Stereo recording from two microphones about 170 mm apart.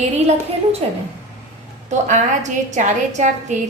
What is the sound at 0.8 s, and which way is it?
A woman's voice, 35° right (ahead or behind).